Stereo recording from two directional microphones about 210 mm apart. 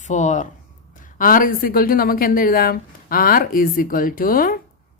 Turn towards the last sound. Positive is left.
turn(degrees=40)  # may be behind; listen again after turning